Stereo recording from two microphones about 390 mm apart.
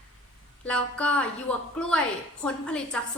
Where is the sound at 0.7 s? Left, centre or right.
Centre.